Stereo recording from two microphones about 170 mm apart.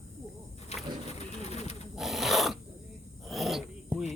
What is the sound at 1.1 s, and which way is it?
Pigeon, 40° left (ahead or behind).